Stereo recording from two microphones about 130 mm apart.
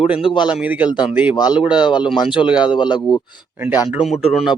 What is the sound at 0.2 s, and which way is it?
Speech, 40° left (ahead or behind).